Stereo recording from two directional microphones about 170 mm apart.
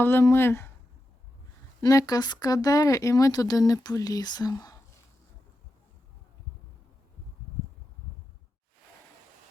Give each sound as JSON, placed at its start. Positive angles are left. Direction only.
{"t": 0.0, "sound": "speech", "side_deg": 15}
{"t": 1.8, "sound": "speech", "side_deg": 20}